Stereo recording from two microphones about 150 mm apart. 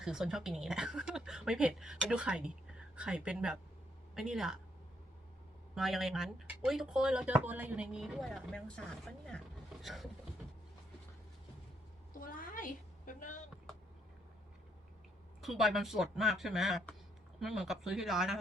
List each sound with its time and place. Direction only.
0.0 s speech: 5° right (ahead or behind)
5.7 s speech: centre (ahead or behind)
12.2 s a sound: 65° left (ahead or behind)
15.4 s speech: centre (ahead or behind)